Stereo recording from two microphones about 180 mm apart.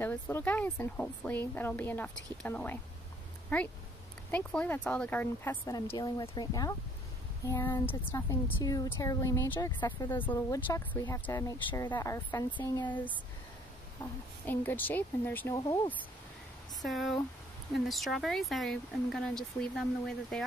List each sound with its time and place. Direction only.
0.0 s a woman's voice: 10° left (ahead or behind)
12.5 s speech: 25° left (ahead or behind)
14.4 s a woman's voice: 10° left (ahead or behind)
15.5 s speech: 20° left (ahead or behind)
16.8 s speech: centre (ahead or behind)